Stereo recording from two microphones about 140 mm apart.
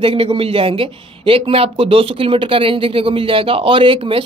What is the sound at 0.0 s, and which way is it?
Speech, 40° right (ahead or behind).